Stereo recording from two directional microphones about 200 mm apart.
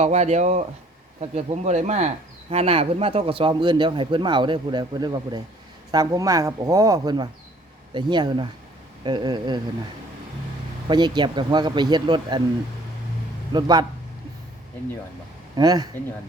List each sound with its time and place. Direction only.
0.0 s a man's voice: 35° right (ahead or behind)
10.8 s a man's voice: 20° right (ahead or behind)
13.5 s a man's voice: 20° right (ahead or behind)
15.5 s a man's voice: 20° right (ahead or behind)